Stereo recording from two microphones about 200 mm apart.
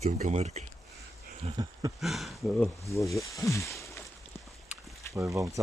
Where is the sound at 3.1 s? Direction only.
15° left (ahead or behind).